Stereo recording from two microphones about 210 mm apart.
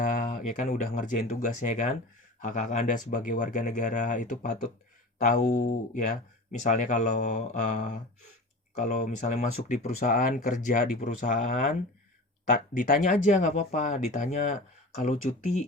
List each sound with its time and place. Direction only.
0.0 s speech: 40° left (ahead or behind)